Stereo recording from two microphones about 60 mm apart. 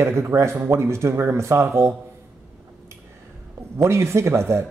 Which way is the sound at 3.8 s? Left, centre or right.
Right.